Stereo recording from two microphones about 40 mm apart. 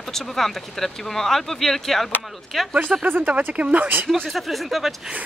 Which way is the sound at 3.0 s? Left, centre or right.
Right.